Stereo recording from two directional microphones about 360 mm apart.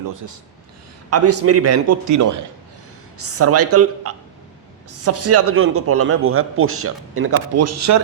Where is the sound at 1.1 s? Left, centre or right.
Right.